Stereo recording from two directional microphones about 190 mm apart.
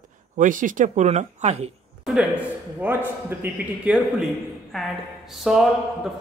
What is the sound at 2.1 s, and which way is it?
A man's voice, 10° right (ahead or behind).